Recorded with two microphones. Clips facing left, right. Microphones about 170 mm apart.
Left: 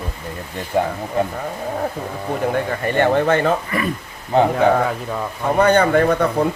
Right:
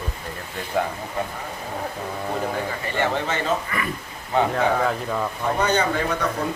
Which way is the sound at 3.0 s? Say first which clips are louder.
Left 8 dB; 55° left (ahead or behind).